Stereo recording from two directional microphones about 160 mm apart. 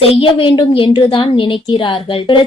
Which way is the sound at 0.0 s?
35° left (ahead or behind).